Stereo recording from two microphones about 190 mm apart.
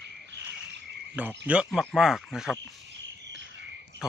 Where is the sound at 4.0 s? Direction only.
65° right (ahead or behind).